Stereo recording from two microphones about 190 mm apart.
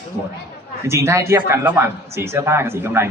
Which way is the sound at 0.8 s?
15° right (ahead or behind).